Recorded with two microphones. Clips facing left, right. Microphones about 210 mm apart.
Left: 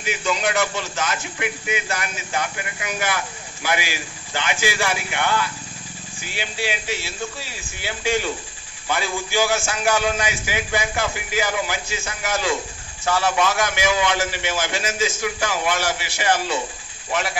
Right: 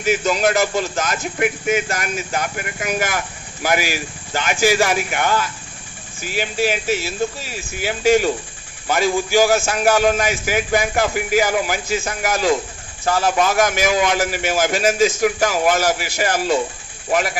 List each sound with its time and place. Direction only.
0.0 s a man's voice: 40° right (ahead or behind)
8.8 s a man's voice: 45° right (ahead or behind)